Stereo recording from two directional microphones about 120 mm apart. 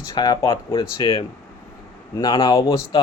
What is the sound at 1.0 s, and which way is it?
Speech, 50° left (ahead or behind).